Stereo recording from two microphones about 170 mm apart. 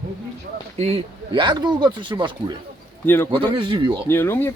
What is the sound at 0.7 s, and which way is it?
Speech, 35° right (ahead or behind).